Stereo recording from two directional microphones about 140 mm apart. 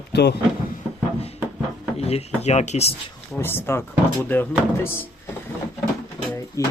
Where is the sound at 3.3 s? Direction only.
15° left (ahead or behind).